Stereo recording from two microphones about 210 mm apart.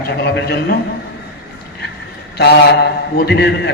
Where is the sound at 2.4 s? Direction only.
50° left (ahead or behind).